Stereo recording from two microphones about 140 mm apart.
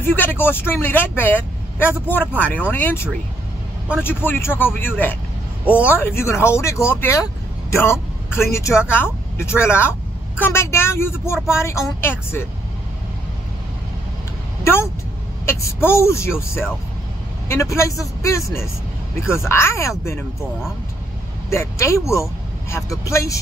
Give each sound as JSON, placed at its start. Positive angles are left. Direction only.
{"t": 0.0, "sound": "speech", "side_deg": 15}
{"t": 14.6, "sound": "a sound", "side_deg": 15}
{"t": 15.4, "sound": "speech", "side_deg": 20}
{"t": 21.5, "sound": "speech", "side_deg": 20}